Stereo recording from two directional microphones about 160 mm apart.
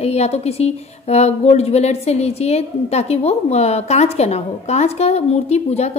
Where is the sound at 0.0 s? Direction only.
40° left (ahead or behind).